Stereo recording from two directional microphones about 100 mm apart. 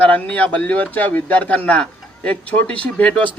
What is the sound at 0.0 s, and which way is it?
A man's voice, 15° left (ahead or behind).